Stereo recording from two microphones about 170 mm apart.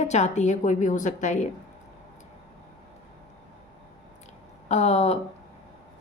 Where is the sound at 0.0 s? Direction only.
40° left (ahead or behind).